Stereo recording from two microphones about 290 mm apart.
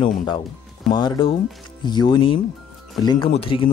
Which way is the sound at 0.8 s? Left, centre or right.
Centre.